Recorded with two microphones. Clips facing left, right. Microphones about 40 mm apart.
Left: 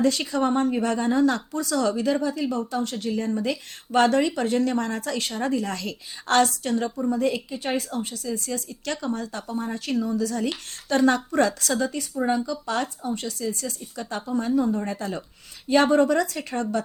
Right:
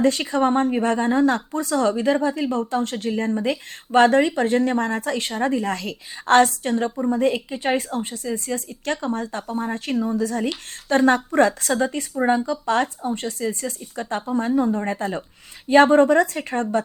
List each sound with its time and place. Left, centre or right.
0.0 s speech: right